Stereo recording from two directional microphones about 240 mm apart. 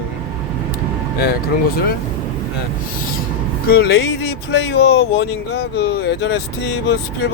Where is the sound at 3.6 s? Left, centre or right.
Left.